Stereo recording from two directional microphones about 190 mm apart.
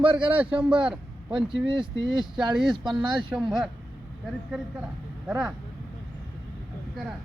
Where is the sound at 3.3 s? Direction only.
Centre (ahead or behind).